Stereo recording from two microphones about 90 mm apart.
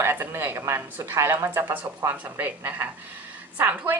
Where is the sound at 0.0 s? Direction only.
25° right (ahead or behind).